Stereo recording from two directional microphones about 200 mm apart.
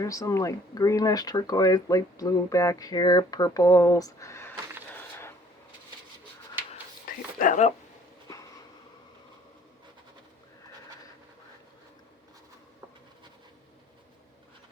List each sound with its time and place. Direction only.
0.0 s speech: 15° left (ahead or behind)
4.9 s a sound: 10° left (ahead or behind)
7.3 s speech: 40° left (ahead or behind)